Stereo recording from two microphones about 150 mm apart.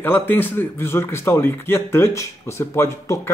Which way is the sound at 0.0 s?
15° left (ahead or behind).